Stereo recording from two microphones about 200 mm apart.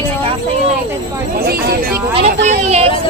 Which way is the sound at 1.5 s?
50° right (ahead or behind).